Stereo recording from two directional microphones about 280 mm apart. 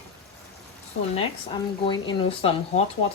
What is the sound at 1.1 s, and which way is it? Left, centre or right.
Speech, centre.